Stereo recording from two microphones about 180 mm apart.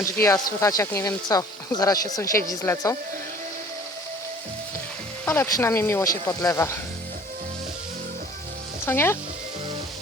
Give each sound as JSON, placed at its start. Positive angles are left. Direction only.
{"t": 0.0, "sound": "speech", "side_deg": 15}
{"t": 5.2, "sound": "speech", "side_deg": 10}
{"t": 8.9, "sound": "speech", "side_deg": 15}